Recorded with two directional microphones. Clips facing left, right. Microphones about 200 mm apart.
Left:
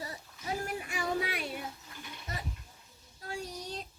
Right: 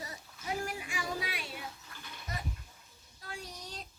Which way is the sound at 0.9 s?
55° left (ahead or behind).